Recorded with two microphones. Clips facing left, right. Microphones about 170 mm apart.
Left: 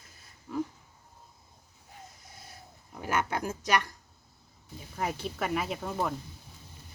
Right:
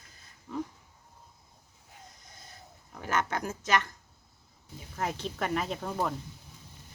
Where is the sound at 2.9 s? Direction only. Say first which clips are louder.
Even; 10° left (ahead or behind).